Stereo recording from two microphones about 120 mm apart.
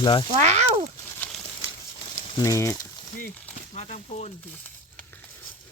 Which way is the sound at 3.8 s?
65° left (ahead or behind).